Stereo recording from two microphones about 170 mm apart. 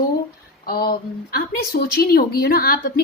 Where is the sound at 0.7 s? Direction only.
60° left (ahead or behind).